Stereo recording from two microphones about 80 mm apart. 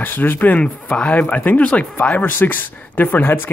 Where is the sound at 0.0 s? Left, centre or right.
Left.